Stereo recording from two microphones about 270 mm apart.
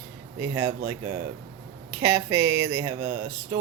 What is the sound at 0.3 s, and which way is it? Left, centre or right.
Speech, centre.